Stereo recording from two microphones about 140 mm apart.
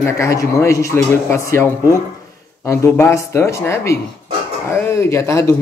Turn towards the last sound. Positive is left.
turn(degrees=20)  # may be behind; listen again after turning